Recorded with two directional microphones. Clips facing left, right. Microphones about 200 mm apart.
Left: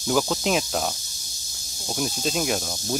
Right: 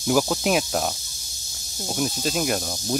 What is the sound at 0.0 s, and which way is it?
Speech, 5° right (ahead or behind).